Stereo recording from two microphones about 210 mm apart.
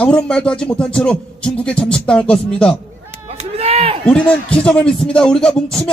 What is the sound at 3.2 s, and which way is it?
Run, 30° right (ahead or behind).